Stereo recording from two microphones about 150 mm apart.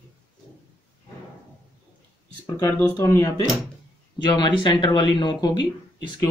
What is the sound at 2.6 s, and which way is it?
Speech, 15° left (ahead or behind).